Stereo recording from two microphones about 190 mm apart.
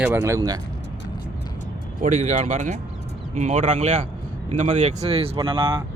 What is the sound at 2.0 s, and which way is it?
Speech, 40° right (ahead or behind).